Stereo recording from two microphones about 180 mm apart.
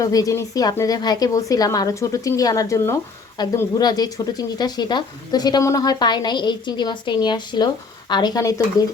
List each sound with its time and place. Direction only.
0.0 s speech: 20° left (ahead or behind)